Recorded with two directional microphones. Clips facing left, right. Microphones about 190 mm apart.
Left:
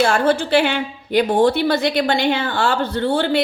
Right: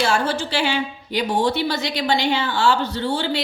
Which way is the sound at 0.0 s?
55° left (ahead or behind).